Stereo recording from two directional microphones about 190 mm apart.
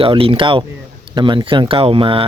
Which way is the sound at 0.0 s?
30° right (ahead or behind).